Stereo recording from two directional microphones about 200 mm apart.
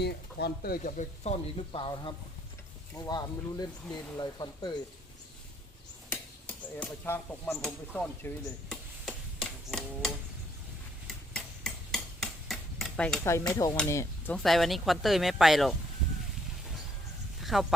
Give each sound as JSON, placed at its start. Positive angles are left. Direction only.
{"t": 0.0, "sound": "speech", "side_deg": 55}
{"t": 6.1, "sound": "a sound", "side_deg": 10}
{"t": 7.6, "sound": "speech", "side_deg": 5}
{"t": 8.7, "sound": "tick-tock", "side_deg": 5}
{"t": 11.3, "sound": "a sound", "side_deg": 0}
{"t": 13.2, "sound": "stir", "side_deg": 15}
{"t": 13.7, "sound": "speech", "side_deg": 15}
{"t": 14.3, "sound": "speech", "side_deg": 0}
{"t": 17.4, "sound": "speech", "side_deg": 0}